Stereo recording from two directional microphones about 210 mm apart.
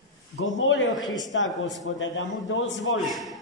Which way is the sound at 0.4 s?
65° left (ahead or behind).